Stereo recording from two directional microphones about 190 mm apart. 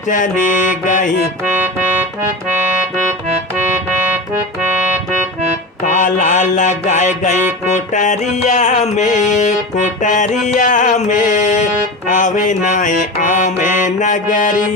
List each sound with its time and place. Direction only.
0.1 s music: 45° left (ahead or behind)
5.8 s music: 40° left (ahead or behind)